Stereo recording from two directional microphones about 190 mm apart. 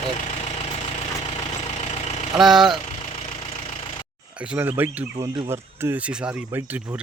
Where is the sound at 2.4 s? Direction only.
Centre (ahead or behind).